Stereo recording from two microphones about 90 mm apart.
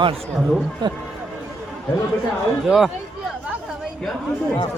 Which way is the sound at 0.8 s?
60° right (ahead or behind).